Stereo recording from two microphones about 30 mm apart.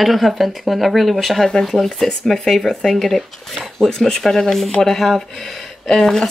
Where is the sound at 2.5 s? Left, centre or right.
Centre.